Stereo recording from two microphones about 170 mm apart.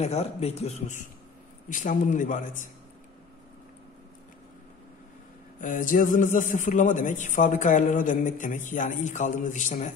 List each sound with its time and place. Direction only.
0.0 s a man's voice: 40° left (ahead or behind)
5.6 s a man's voice: 50° left (ahead or behind)